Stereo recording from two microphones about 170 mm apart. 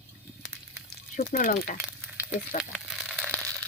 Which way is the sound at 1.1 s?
50° left (ahead or behind).